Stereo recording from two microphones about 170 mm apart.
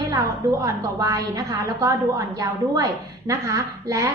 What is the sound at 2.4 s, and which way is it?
A woman's voice, 20° right (ahead or behind).